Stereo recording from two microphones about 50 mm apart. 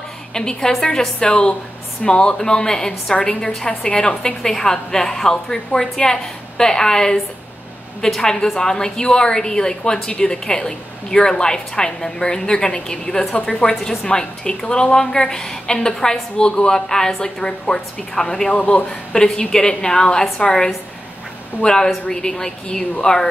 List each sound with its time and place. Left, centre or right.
0.3 s a woman's voice: centre
1.2 s a woman's voice: left
8.2 s a woman's voice: centre
18.6 s a man's voice: left
18.9 s a woman's voice: centre